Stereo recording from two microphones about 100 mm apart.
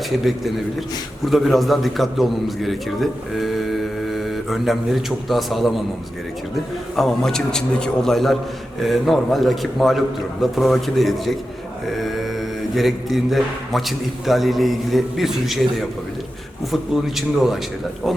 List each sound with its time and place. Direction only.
1.2 s a man's voice: centre (ahead or behind)
6.9 s a man's voice: centre (ahead or behind)
11.9 s mantra: centre (ahead or behind)
12.7 s a man's voice: centre (ahead or behind)
16.9 s a man's voice: 5° right (ahead or behind)